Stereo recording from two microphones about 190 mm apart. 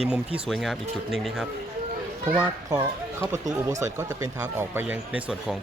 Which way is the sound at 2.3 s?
15° right (ahead or behind).